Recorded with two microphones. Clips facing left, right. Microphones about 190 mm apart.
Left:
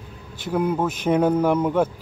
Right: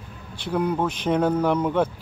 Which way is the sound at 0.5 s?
5° left (ahead or behind).